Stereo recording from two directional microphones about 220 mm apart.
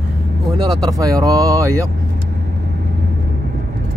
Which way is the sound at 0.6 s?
15° right (ahead or behind).